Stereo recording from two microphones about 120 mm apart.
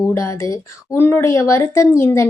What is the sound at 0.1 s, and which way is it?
A woman's voice, 25° left (ahead or behind).